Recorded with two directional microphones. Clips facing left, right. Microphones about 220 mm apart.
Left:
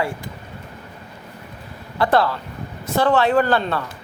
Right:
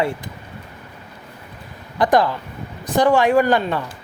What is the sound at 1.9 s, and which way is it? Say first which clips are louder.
Speech: right 2 dB; 15° right (ahead or behind).